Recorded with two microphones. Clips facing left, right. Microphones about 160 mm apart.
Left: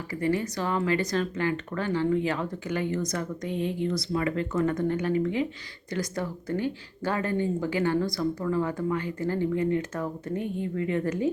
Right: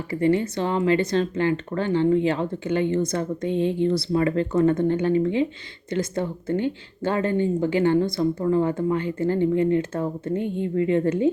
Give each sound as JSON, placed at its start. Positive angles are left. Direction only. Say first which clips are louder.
{"t": 0.1, "sound": "speech", "louder": "right 6 dB", "side_deg": -25}